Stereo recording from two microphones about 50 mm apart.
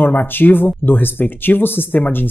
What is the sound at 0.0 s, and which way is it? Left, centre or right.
Speech, left.